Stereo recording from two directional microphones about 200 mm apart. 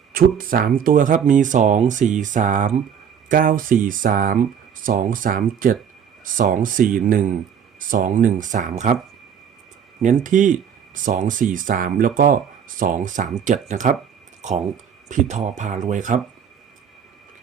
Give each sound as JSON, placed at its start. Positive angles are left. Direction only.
{"t": 0.1, "sound": "speech", "side_deg": -45}
{"t": 10.2, "sound": "speech", "side_deg": -40}